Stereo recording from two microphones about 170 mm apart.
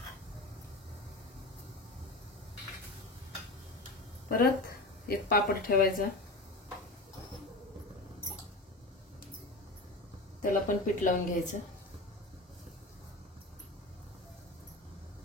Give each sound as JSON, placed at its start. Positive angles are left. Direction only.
{"t": 4.3, "sound": "a woman's voice", "side_deg": 60}
{"t": 10.4, "sound": "a woman's voice", "side_deg": 50}